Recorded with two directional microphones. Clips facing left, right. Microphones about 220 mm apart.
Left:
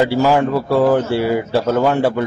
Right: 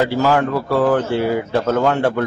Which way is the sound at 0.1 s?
10° left (ahead or behind).